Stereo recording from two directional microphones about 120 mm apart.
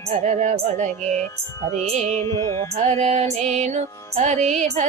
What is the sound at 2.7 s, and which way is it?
Music, 65° right (ahead or behind).